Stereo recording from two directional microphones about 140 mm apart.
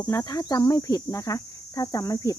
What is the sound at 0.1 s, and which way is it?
Speech, 25° left (ahead or behind).